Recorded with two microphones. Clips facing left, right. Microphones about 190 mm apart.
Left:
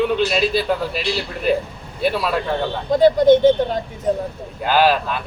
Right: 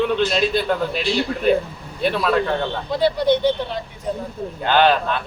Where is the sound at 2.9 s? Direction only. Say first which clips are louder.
Left 6 dB; 45° left (ahead or behind).